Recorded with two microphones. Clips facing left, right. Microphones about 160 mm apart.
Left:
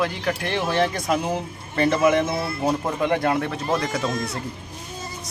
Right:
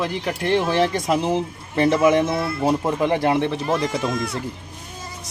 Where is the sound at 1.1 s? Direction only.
25° right (ahead or behind).